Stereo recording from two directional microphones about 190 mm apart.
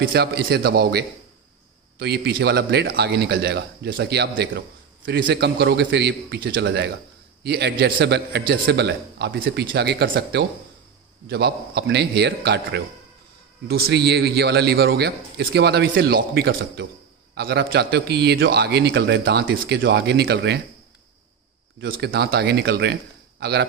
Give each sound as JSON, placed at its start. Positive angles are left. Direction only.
{"t": 0.0, "sound": "a man's voice", "side_deg": -60}
{"t": 21.9, "sound": "a man's voice", "side_deg": -55}